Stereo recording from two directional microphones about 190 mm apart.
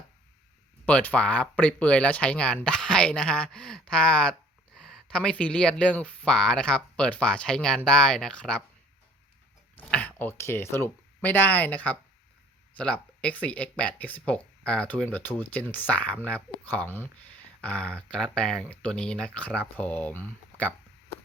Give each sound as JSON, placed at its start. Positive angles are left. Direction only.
{"t": 0.9, "sound": "speech", "side_deg": 5}
{"t": 9.7, "sound": "speech", "side_deg": 10}